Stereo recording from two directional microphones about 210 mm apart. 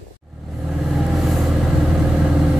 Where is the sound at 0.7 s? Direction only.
Centre (ahead or behind).